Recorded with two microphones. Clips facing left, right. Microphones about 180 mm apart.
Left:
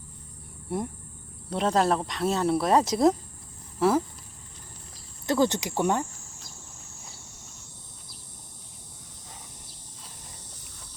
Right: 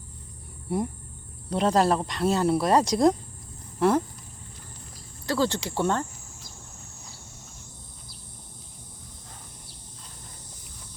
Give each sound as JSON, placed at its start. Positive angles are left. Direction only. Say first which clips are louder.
{"t": 1.5, "sound": "speech", "louder": "right 2 dB", "side_deg": 0}
{"t": 5.2, "sound": "speech", "louder": "left 2 dB", "side_deg": 20}